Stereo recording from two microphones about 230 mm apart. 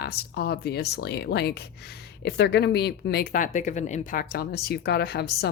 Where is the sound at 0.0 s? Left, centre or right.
Left.